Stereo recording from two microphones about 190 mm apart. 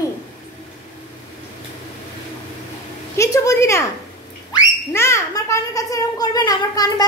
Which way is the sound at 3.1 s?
15° left (ahead or behind).